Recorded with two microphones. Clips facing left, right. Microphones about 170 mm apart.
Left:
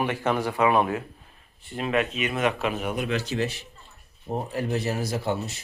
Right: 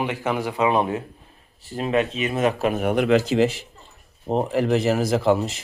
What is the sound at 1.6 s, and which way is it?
Speech, 35° right (ahead or behind).